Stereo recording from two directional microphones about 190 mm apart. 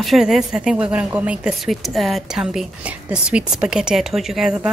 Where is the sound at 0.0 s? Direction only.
Centre (ahead or behind).